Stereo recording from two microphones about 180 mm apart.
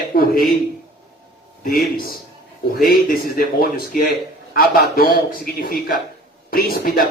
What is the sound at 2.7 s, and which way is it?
A man's voice, 55° left (ahead or behind).